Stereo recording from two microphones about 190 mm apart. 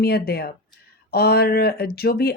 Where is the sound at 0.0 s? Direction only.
55° left (ahead or behind).